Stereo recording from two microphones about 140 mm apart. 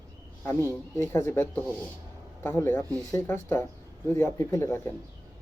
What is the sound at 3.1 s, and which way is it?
Speech, 20° left (ahead or behind).